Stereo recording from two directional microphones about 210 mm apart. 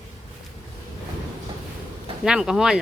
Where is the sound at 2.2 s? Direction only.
5° right (ahead or behind).